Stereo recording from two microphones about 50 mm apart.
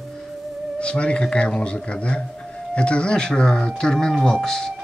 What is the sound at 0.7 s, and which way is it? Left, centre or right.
Speech, left.